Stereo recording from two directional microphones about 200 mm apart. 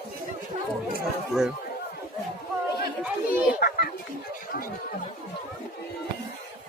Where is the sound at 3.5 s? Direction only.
50° left (ahead or behind).